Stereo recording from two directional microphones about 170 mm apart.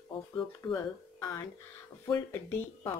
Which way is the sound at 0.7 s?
15° left (ahead or behind).